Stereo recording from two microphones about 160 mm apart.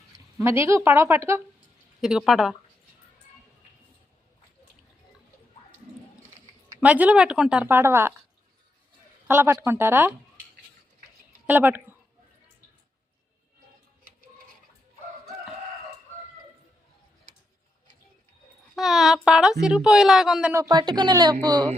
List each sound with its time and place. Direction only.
0.3 s speech: 15° right (ahead or behind)
2.0 s a woman's voice: centre (ahead or behind)
6.7 s speech: 10° right (ahead or behind)
9.2 s speech: 15° right (ahead or behind)
11.4 s speech: 10° right (ahead or behind)
18.8 s a woman's voice: centre (ahead or behind)
20.5 s speech: 20° right (ahead or behind)